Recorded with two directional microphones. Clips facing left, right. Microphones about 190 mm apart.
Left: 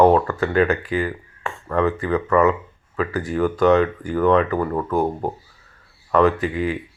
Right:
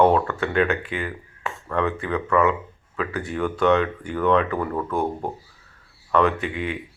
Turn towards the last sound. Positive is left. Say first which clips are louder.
# left 5 dB
turn(degrees=0)  # may be behind; listen again after turning